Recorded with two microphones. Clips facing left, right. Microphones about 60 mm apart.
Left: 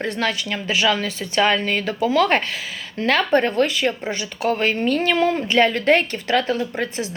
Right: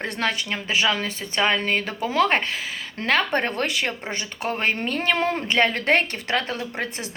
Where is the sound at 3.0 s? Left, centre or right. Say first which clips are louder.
Left 4 dB; right.